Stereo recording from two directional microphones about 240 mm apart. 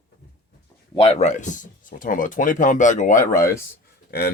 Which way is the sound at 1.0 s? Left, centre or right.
Left.